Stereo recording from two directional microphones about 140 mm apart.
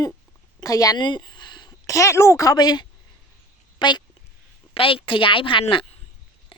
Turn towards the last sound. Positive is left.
turn(degrees=40)  # may be behind; listen again after turning